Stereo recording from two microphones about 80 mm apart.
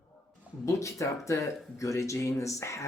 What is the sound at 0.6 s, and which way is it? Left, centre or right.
Speech, left.